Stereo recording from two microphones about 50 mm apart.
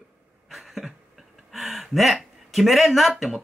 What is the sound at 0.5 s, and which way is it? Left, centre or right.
Cough, centre.